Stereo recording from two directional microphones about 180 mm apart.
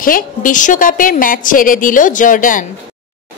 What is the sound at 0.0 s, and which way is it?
A woman's voice, 50° left (ahead or behind).